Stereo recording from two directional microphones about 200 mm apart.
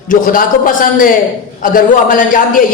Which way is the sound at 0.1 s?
45° left (ahead or behind).